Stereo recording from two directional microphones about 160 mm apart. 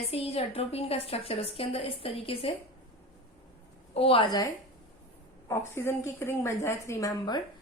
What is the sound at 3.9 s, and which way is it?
A woman's voice, 35° left (ahead or behind).